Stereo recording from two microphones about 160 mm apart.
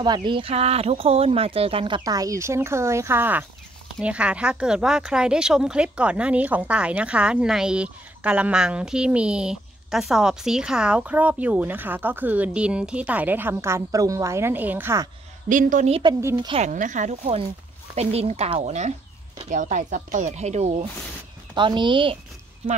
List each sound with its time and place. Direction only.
0.0 s speech: 30° right (ahead or behind)
15.4 s speech: 55° right (ahead or behind)
15.9 s speech: 30° right (ahead or behind)
16.6 s speech: 50° right (ahead or behind)
21.5 s speech: 30° right (ahead or behind)